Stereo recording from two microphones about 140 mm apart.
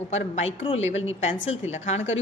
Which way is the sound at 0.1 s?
50° left (ahead or behind).